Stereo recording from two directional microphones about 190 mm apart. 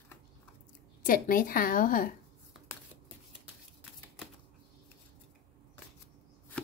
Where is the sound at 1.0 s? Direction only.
45° left (ahead or behind).